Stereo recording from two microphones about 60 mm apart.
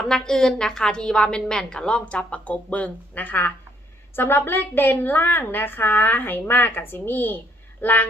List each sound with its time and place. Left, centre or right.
0.0 s a woman's voice: centre; by 3.5 s left
4.1 s speech: left